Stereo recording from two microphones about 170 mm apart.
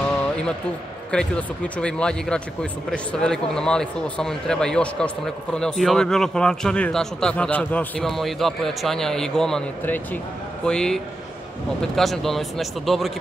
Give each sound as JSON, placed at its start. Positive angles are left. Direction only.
{"t": 1.1, "sound": "speech", "side_deg": 5}